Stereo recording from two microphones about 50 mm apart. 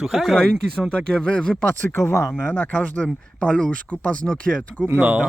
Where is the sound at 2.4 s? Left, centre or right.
Left.